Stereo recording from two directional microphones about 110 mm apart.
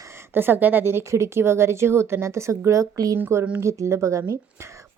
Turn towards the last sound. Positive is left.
turn(degrees=-25)  # may be behind; listen again after turning